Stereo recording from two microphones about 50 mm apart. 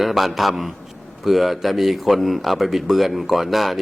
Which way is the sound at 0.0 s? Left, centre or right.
Centre.